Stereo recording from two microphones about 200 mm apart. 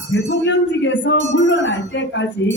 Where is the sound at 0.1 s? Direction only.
65° left (ahead or behind).